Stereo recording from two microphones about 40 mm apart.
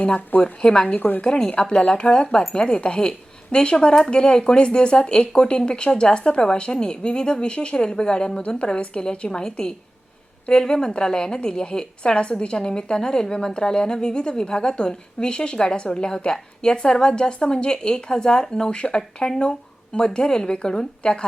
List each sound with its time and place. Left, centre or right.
0.4 s a woman's voice: left
0.9 s a woman's voice: left
1.2 s a woman's voice: left
8.9 s a woman's voice: centre